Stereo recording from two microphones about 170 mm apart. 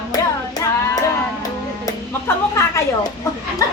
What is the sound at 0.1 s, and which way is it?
Child singing, 20° left (ahead or behind).